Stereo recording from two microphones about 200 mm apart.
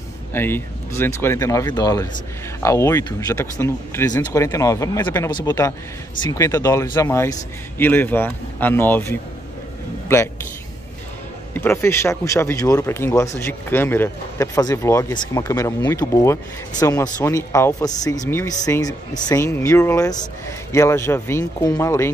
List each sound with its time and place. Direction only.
0.3 s a man's voice: 10° left (ahead or behind)
11.5 s speech: 10° left (ahead or behind)